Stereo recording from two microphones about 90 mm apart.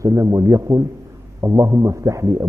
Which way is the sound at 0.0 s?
35° right (ahead or behind).